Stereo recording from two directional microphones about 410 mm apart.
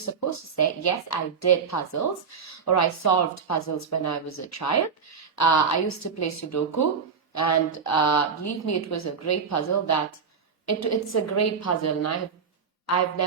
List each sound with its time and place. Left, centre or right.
0.0 s a woman's voice: left